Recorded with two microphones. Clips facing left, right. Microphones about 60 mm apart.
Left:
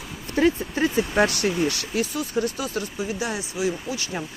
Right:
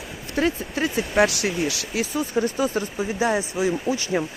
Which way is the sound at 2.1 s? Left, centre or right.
Right.